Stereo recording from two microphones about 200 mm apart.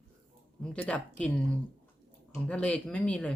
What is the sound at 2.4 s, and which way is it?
Speech, 5° left (ahead or behind).